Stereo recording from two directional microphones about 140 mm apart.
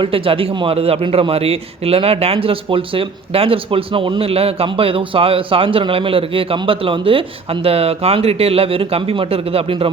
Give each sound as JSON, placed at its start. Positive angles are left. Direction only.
{"t": 0.0, "sound": "a man's voice", "side_deg": -40}